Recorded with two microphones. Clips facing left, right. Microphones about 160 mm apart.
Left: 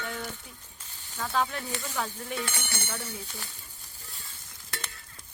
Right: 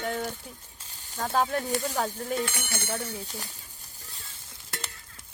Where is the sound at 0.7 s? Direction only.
40° right (ahead or behind).